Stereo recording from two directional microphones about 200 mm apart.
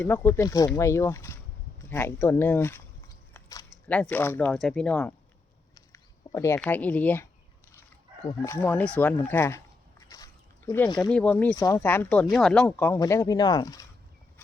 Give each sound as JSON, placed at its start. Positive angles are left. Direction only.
{"t": 0.0, "sound": "speech", "side_deg": 10}
{"t": 5.7, "sound": "a sound", "side_deg": 15}
{"t": 6.6, "sound": "speech", "side_deg": 5}
{"t": 10.7, "sound": "speech", "side_deg": 20}
{"t": 11.1, "sound": "speech", "side_deg": 5}